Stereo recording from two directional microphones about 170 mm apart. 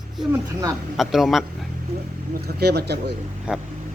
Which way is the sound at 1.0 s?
Centre (ahead or behind).